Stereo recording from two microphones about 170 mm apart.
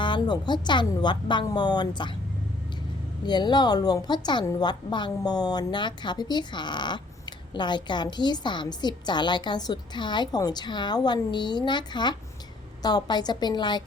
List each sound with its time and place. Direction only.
0.0 s a woman's voice: 25° left (ahead or behind)
3.2 s a woman's voice: 25° left (ahead or behind)